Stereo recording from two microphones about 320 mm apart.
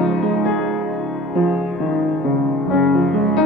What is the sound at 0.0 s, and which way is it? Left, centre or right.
Music, centre.